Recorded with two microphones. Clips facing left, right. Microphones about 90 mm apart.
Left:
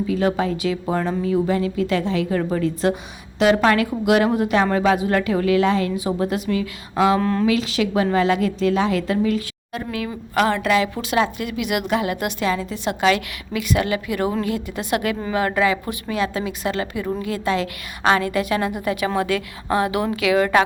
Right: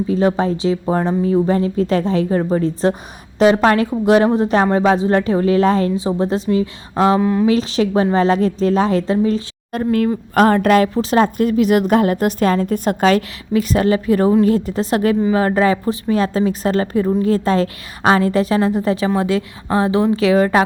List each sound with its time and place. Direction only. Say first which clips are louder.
0.1 s a woman's voice: right 5 dB; 30° right (ahead or behind)
6.0 s a woman's voice: right 4 dB; 25° right (ahead or behind)
7.2 s speech: right 4 dB; 15° right (ahead or behind)
7.4 s a woman's voice: right 4 dB; 35° right (ahead or behind)
9.7 s a woman's voice: right 10 dB; 45° right (ahead or behind)
10.9 s a woman's voice: right 6 dB; 35° right (ahead or behind)